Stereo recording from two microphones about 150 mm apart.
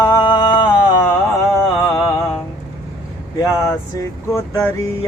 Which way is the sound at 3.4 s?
20° left (ahead or behind).